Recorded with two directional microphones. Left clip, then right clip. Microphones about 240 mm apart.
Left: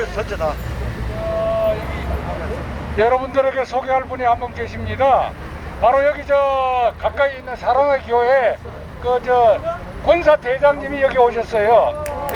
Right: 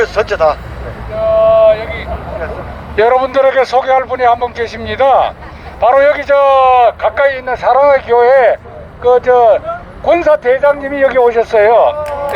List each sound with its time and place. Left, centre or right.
0.0 s speech: right
1.5 s vehicle: right
2.9 s speech: right